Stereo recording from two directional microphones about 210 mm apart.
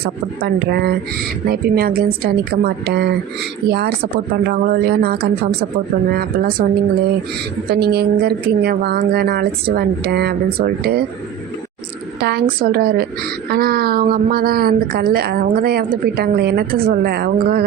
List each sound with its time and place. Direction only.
0.0 s a woman's voice: 50° right (ahead or behind)
7.7 s a woman's voice: 50° right (ahead or behind)
12.2 s a woman's voice: 45° right (ahead or behind)